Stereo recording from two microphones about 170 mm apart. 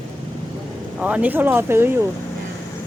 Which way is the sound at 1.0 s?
10° right (ahead or behind).